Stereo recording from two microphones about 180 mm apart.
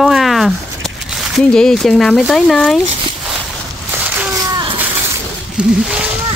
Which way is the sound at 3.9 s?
10° right (ahead or behind).